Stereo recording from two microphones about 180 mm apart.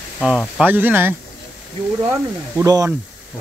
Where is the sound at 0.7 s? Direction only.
10° right (ahead or behind).